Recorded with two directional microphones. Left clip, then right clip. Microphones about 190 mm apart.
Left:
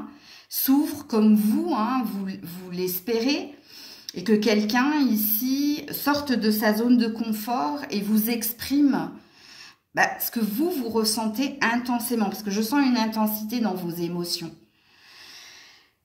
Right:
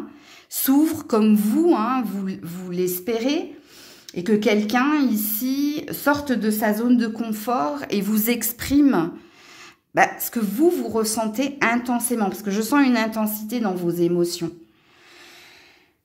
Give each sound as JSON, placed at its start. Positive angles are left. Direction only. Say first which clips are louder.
{"t": 0.6, "sound": "a woman's voice", "louder": "right 4 dB", "side_deg": -50}